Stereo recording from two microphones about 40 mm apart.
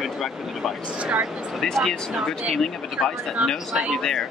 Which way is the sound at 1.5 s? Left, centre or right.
Centre.